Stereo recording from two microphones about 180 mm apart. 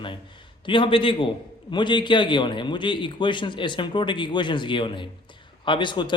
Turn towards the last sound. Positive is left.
turn(degrees=25)  # may be behind; listen again after turning